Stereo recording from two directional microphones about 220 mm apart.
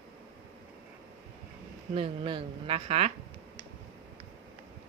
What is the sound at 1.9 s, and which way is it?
Speech, 25° right (ahead or behind).